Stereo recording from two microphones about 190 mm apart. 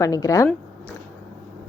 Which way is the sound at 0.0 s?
15° left (ahead or behind).